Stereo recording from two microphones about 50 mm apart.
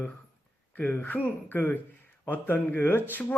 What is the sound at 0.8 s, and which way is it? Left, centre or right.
A man's voice, left.